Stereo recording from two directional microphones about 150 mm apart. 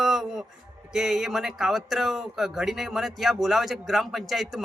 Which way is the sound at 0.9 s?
5° right (ahead or behind).